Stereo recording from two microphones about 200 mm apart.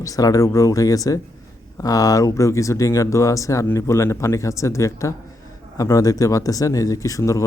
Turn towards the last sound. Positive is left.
turn(degrees=15)  # may be behind; listen again after turning